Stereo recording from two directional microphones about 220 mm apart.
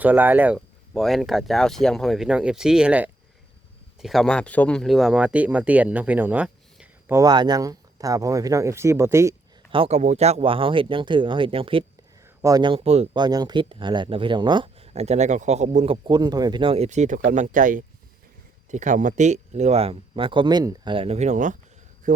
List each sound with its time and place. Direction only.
0.0 s speech: 10° right (ahead or behind)
7.2 s speech: 20° right (ahead or behind)
9.7 s speech: 25° right (ahead or behind)
16.0 s speech: 20° right (ahead or behind); by 21.6 s 35° right (ahead or behind)
22.0 s a sound: 35° right (ahead or behind)